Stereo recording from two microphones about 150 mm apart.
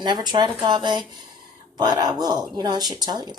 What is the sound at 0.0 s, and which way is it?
Speech, 30° right (ahead or behind).